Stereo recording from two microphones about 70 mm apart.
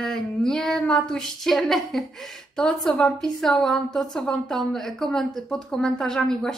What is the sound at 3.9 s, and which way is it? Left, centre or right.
Speech, centre.